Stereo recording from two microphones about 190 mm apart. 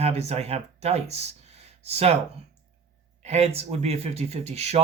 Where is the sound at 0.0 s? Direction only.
35° right (ahead or behind).